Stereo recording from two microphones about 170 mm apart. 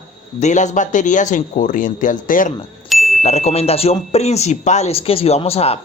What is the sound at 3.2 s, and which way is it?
Speech, 40° left (ahead or behind).